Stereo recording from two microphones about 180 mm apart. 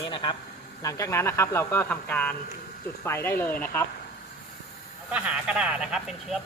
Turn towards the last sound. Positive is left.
turn(degrees=-5)  # may be behind; listen again after turning